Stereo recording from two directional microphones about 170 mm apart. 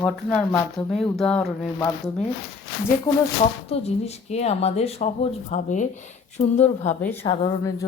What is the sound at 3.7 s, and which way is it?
Speech, 35° left (ahead or behind).